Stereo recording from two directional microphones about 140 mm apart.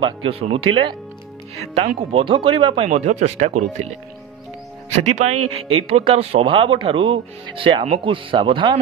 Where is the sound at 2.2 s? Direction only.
35° right (ahead or behind); by 3.7 s 55° right (ahead or behind).